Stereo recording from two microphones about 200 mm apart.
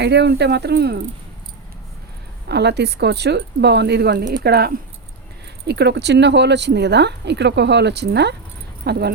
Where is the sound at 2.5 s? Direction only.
55° right (ahead or behind).